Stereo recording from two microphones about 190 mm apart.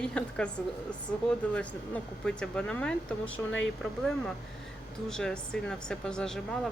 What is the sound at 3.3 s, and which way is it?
Speech, 80° left.